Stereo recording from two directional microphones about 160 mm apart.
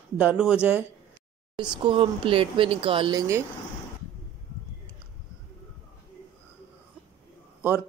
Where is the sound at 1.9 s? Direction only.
35° right (ahead or behind).